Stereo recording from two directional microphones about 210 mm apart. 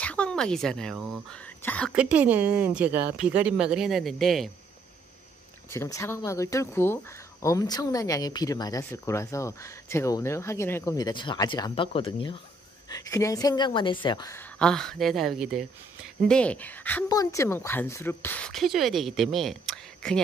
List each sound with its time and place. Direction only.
0.0 s speech: 5° left (ahead or behind)
2.0 s speech: 5° right (ahead or behind)
5.7 s speech: 15° left (ahead or behind)
14.6 s speech: 5° left (ahead or behind)